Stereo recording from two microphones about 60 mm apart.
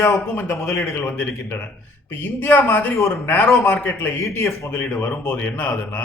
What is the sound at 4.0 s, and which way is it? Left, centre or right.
Speech, left.